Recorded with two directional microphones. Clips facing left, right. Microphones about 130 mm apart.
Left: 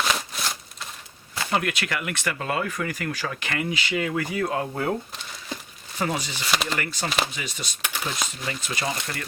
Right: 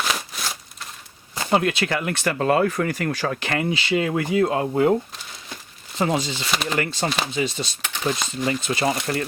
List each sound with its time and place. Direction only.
0.3 s a sound: centre (ahead or behind)
1.5 s speech: 30° right (ahead or behind)
6.0 s speech: 25° right (ahead or behind)
6.5 s speech: centre (ahead or behind)
6.7 s speech: 25° right (ahead or behind)
7.9 s speech: centre (ahead or behind)
8.4 s speech: 30° right (ahead or behind)